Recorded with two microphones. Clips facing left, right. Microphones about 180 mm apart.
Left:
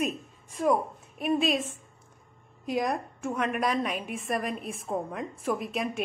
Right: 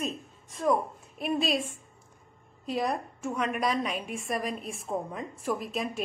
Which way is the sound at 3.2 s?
5° left (ahead or behind).